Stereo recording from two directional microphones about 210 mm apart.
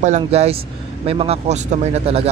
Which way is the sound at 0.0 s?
35° right (ahead or behind).